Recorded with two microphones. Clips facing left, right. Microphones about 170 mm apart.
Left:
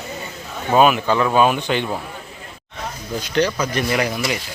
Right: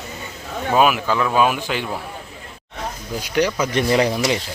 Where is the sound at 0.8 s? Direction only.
5° right (ahead or behind).